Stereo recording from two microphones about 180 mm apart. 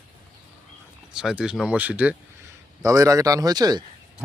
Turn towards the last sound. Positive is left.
turn(degrees=-20)  # may be behind; listen again after turning